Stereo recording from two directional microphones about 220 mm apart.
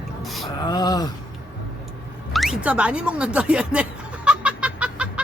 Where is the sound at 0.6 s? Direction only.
20° left (ahead or behind).